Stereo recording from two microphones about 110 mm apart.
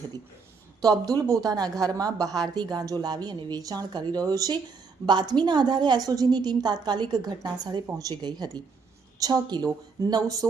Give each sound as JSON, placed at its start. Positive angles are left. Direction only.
{"t": 0.8, "sound": "a woman's voice", "side_deg": -35}